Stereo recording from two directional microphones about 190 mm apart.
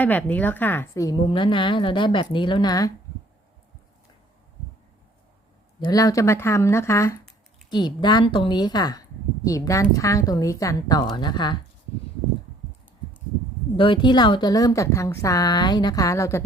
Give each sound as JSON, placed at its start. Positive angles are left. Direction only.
{"t": 0.0, "sound": "speech", "side_deg": 10}
{"t": 5.8, "sound": "speech", "side_deg": 20}
{"t": 13.7, "sound": "speech", "side_deg": 25}